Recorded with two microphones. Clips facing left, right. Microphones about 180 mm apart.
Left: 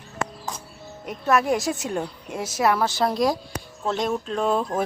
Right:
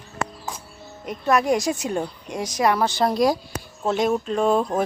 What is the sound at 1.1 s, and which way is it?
A woman's voice, 5° left (ahead or behind).